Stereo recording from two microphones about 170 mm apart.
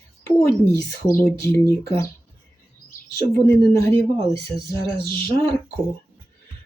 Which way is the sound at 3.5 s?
15° left (ahead or behind).